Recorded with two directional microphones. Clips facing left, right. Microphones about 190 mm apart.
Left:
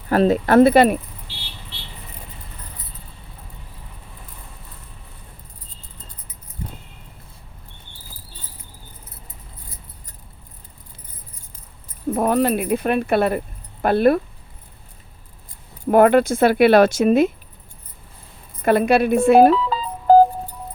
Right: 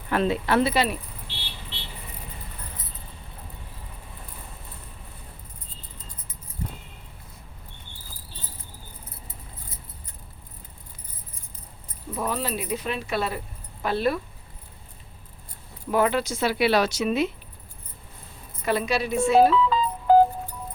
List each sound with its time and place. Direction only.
0.1 s speech: 40° left (ahead or behind)
12.1 s speech: 55° left (ahead or behind)
15.9 s speech: 55° left (ahead or behind)
18.6 s speech: 55° left (ahead or behind)
19.5 s music: 35° left (ahead or behind)